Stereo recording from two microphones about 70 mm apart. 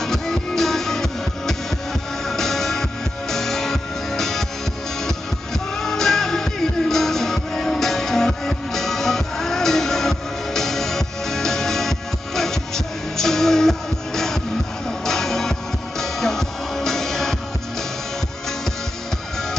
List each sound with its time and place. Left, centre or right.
0.0 s music: centre